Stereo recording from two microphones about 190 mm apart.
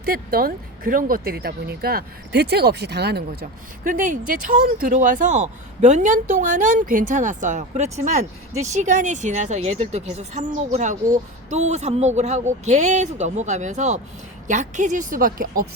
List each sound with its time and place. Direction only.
0.0 s a woman's voice: 50° right (ahead or behind)